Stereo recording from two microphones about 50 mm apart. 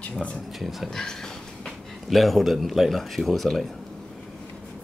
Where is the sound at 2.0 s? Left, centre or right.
Centre.